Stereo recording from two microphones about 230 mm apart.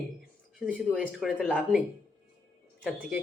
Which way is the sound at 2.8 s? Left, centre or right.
Centre.